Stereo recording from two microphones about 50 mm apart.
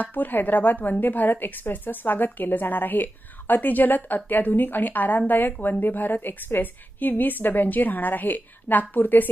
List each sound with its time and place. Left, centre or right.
0.0 s a woman's voice: left